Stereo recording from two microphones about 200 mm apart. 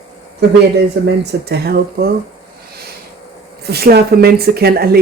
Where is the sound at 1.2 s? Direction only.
55° right (ahead or behind).